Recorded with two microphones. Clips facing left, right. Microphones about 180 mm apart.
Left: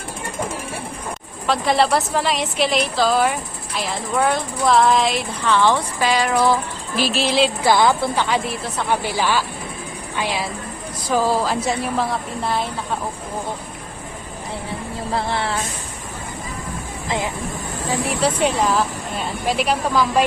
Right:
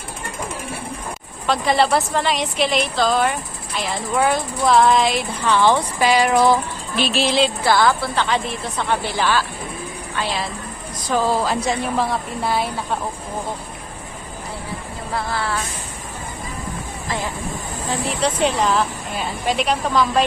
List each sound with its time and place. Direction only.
1.5 s a woman's voice: centre (ahead or behind)
5.5 s speech: 10° right (ahead or behind)
6.9 s speech: 5° left (ahead or behind)
7.6 s a woman's voice: 15° left (ahead or behind); by 12.6 s centre (ahead or behind)
15.1 s a sound: 25° left (ahead or behind)
17.1 s a sound: 20° left (ahead or behind)
18.0 s a woman's voice: 10° left (ahead or behind)